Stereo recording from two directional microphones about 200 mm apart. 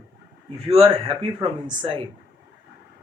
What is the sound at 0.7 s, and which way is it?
Speech, 25° right (ahead or behind).